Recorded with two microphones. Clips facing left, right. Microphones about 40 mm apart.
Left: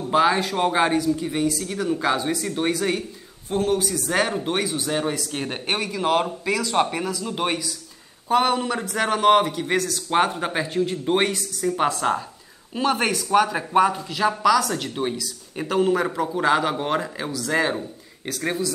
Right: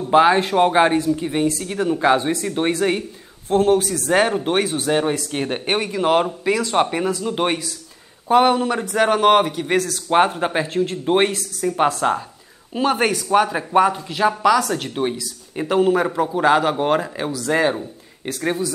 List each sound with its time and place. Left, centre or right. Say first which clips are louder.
0.1 s speech: right 5 dB; right
0.9 s speech: right 2 dB; right
1.2 s a man's voice: right 3 dB; right
4.6 s a man's voice: right 5 dB; right; by 9.6 s centre
9.6 s speech: right 3 dB; centre
10.0 s a man's voice: right 6 dB; centre